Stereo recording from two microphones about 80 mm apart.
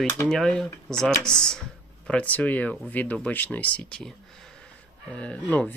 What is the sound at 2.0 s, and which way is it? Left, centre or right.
Speech, centre.